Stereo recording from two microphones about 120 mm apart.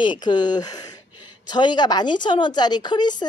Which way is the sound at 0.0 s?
40° left (ahead or behind).